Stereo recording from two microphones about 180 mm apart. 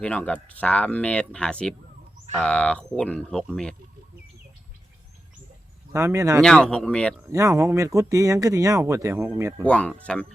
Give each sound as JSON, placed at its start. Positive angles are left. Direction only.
{"t": 0.0, "sound": "speech", "side_deg": 5}
{"t": 5.9, "sound": "speech", "side_deg": -15}
{"t": 6.4, "sound": "speech", "side_deg": 5}
{"t": 7.3, "sound": "speech", "side_deg": -20}
{"t": 9.6, "sound": "speech", "side_deg": 5}